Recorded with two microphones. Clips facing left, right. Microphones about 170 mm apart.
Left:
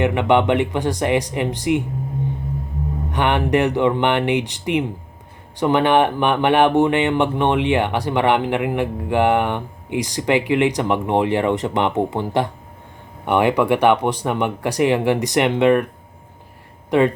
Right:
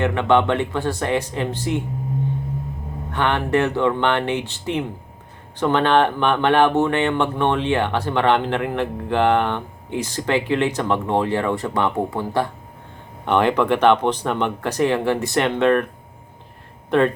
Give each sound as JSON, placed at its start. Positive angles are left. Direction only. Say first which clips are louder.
{"t": 0.0, "sound": "speech", "louder": "left 1 dB", "side_deg": 15}
{"t": 3.1, "sound": "speech", "louder": "left 2 dB", "side_deg": 15}